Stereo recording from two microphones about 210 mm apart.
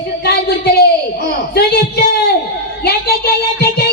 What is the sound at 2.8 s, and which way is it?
Music, 50° left (ahead or behind).